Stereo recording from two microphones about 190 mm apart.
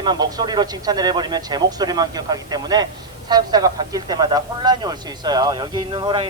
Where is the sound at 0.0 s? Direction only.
20° right (ahead or behind).